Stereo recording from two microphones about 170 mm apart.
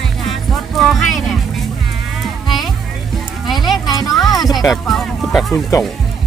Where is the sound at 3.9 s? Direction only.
25° left (ahead or behind).